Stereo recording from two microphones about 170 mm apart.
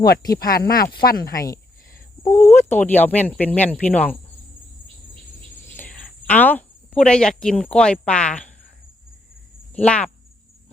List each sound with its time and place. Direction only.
0.3 s speech: 60° left (ahead or behind)
2.2 s speech: 20° left (ahead or behind)
5.7 s speech: 10° left (ahead or behind)
9.7 s speech: 5° left (ahead or behind)